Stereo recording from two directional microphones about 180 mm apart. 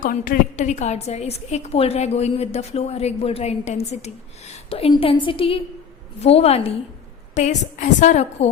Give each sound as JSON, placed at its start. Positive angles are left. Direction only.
{"t": 0.0, "sound": "a woman's voice", "side_deg": 50}